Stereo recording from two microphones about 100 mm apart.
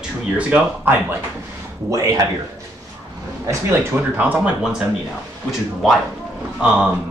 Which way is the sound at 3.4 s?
30° right (ahead or behind).